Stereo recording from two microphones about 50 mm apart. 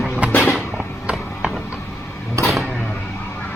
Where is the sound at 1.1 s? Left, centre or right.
Centre.